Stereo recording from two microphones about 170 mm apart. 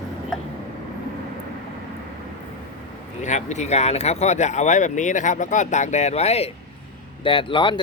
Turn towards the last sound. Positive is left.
turn(degrees=30)  # may be behind; listen again after turning